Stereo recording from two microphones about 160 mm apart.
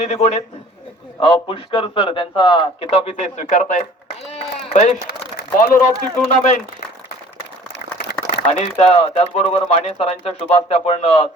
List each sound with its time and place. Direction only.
0.0 s a man's voice: 45° left (ahead or behind)
5.4 s a sound: 55° left (ahead or behind)
6.2 s speech: 45° left (ahead or behind)
8.1 s a man's voice: 40° left (ahead or behind)